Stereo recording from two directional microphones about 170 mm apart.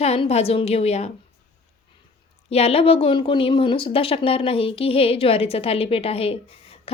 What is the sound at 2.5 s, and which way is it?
A woman's voice, 35° left (ahead or behind).